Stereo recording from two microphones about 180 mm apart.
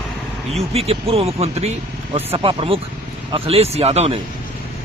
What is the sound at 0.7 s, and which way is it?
Speech, 35° right (ahead or behind).